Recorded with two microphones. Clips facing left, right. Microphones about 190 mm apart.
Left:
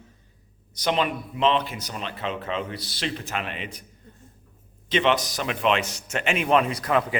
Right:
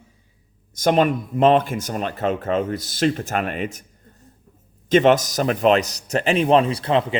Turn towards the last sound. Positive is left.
turn(degrees=-25)  # may be behind; listen again after turning